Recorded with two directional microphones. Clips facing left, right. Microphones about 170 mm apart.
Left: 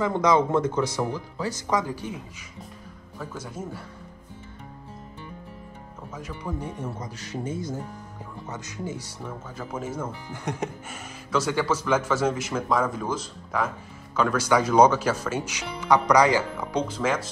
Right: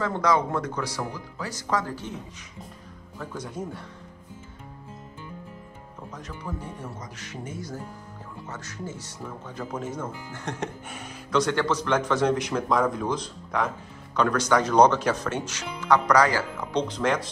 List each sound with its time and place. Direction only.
0.0 s speech: 20° left (ahead or behind)
3.2 s speech: 5° left (ahead or behind)
6.1 s speech: 10° left (ahead or behind)
7.0 s speech: 30° left (ahead or behind)
8.5 s speech: 15° left (ahead or behind)
16.7 s speech: 5° left (ahead or behind)